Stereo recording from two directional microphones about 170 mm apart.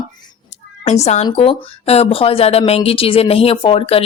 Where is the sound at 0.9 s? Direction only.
40° left (ahead or behind).